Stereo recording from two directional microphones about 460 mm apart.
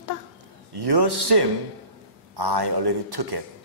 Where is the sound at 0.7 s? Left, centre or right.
Right.